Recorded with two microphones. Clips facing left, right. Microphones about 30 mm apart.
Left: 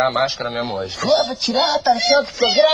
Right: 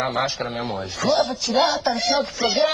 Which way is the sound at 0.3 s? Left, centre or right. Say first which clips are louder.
Left 3 dB; left.